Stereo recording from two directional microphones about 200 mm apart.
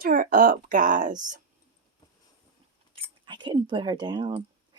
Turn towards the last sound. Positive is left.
turn(degrees=-20)  # may be behind; listen again after turning